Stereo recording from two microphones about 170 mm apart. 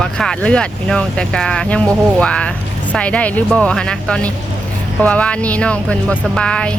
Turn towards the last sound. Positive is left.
turn(degrees=5)  # may be behind; listen again after turning